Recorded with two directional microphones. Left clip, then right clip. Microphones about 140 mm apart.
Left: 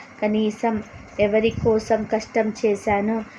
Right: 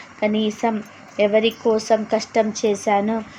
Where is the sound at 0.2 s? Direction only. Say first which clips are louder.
Right 1 dB; 20° right (ahead or behind).